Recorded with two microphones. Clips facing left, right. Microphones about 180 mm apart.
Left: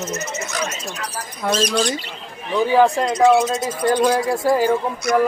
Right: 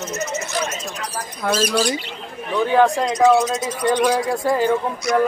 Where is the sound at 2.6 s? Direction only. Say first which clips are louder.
Left 1 dB; 5° left (ahead or behind).